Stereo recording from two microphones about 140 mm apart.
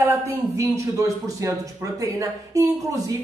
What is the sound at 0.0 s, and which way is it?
Speech, 20° right (ahead or behind).